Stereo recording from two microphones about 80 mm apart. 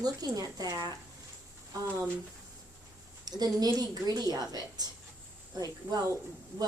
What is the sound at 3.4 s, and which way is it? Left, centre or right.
A woman's voice, right.